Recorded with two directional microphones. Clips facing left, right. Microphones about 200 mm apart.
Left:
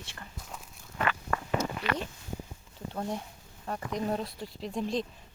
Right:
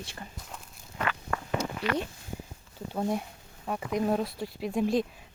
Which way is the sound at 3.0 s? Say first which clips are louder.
Right 5 dB; 10° right (ahead or behind).